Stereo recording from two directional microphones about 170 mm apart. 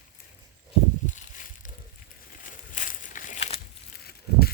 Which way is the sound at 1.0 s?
45° left (ahead or behind).